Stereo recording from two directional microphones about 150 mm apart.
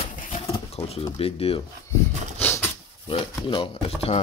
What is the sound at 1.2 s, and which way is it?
Speech, 40° left (ahead or behind).